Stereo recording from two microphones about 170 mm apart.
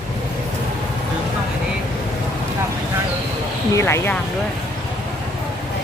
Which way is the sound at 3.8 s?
15° left (ahead or behind).